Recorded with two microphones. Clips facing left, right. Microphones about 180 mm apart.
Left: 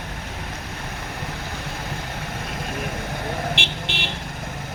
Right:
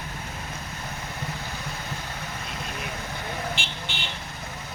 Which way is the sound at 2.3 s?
55° left (ahead or behind).